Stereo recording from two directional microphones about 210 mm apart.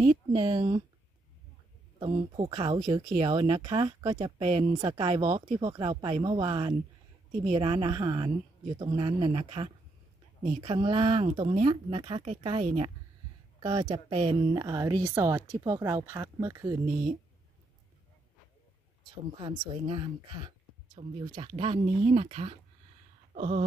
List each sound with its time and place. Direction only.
0.0 s speech: 25° right (ahead or behind)
2.0 s speech: 25° right (ahead or behind)
19.0 s speech: 20° right (ahead or behind)
23.3 s a sound: 35° right (ahead or behind)